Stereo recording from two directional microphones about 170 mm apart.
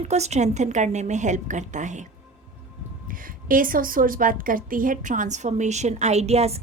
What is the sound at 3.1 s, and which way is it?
A woman's voice, 55° right (ahead or behind).